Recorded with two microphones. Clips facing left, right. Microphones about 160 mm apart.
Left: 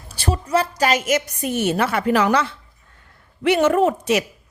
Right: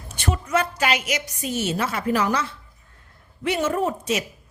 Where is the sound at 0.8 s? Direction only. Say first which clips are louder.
Left 5 dB; 45° left (ahead or behind).